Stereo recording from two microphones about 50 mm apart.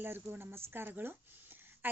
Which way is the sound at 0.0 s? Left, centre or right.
Right.